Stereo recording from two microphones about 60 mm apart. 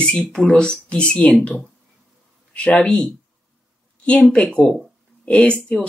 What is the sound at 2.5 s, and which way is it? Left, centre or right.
Speech, centre.